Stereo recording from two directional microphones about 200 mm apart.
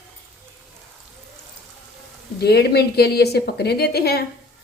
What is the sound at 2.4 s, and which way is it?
A woman's voice, 55° left (ahead or behind).